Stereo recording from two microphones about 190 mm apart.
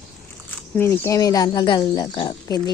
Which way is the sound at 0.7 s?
10° left (ahead or behind).